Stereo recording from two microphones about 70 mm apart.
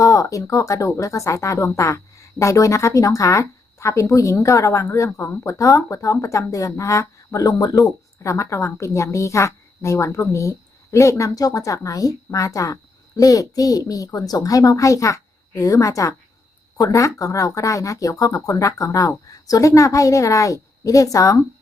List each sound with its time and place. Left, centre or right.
0.0 s a woman's voice: left
7.4 s speech: left
8.2 s a woman's voice: left